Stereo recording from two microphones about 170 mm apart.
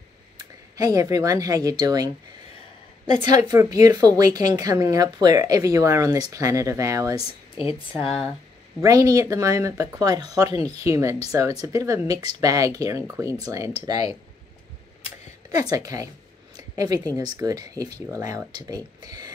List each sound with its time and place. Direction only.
0.7 s a woman's voice: 20° right (ahead or behind)
3.2 s a woman's voice: 25° right (ahead or behind)
7.2 s speech: 35° left (ahead or behind)
8.8 s a woman's voice: 20° right (ahead or behind)
15.7 s a woman's voice: 20° right (ahead or behind)
16.5 s a sound: 20° right (ahead or behind)
17.4 s a woman's voice: 20° right (ahead or behind)